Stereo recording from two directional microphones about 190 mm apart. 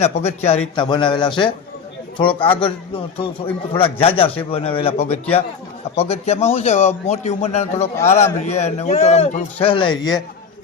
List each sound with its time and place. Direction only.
0.0 s a man's voice: 35° left (ahead or behind)
7.9 s a man's voice: 15° left (ahead or behind)
8.2 s a man's voice: 35° left (ahead or behind); by 10.2 s 20° left (ahead or behind)